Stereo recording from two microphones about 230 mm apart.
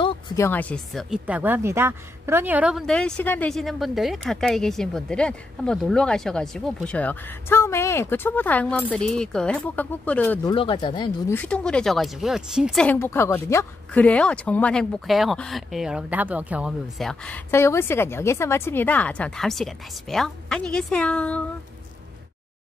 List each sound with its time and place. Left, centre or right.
0.0 s speech: centre
10.5 s speech: left
11.3 s speech: centre